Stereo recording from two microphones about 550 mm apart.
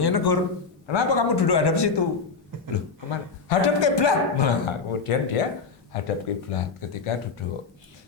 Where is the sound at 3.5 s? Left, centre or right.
Left.